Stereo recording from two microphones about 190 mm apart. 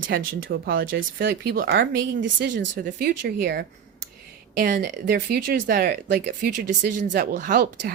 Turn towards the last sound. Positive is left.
turn(degrees=-60)  # may be behind; listen again after turning